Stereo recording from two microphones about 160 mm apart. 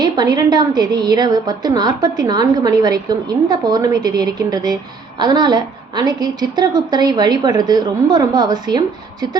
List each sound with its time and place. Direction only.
0.0 s a woman's voice: 25° right (ahead or behind)